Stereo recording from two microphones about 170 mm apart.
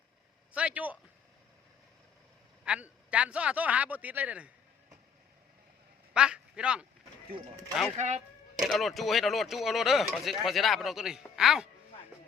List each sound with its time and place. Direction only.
0.5 s a man's voice: 10° right (ahead or behind)
2.6 s a man's voice: 5° right (ahead or behind)
6.1 s a man's voice: 5° right (ahead or behind)
7.9 s speech: 40° right (ahead or behind)
8.6 s speech: centre (ahead or behind)